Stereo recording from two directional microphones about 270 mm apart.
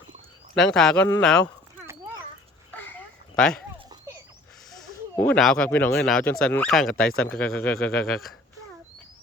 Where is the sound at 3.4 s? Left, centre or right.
Centre.